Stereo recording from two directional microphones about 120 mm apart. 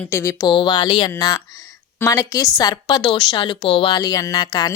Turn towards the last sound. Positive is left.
turn(degrees=35)  # may be behind; listen again after turning